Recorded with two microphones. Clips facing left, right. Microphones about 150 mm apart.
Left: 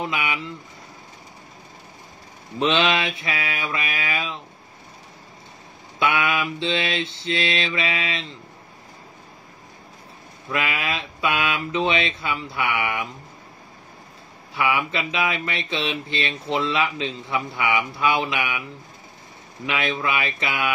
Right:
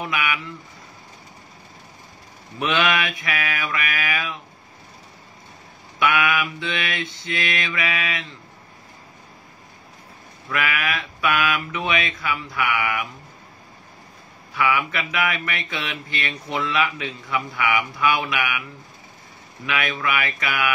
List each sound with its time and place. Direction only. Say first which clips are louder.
0.0 s speech: even; 25° left (ahead or behind)
2.6 s speech: left 1 dB; 25° left (ahead or behind)
5.9 s speech: right 1 dB; 30° left (ahead or behind)
10.5 s speech: right 1 dB; 25° left (ahead or behind)
14.5 s speech: right 1 dB; 20° left (ahead or behind)
19.6 s speech: left 1 dB; 20° left (ahead or behind)